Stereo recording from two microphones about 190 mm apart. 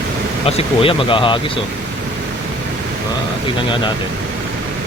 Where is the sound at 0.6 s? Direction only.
30° left (ahead or behind).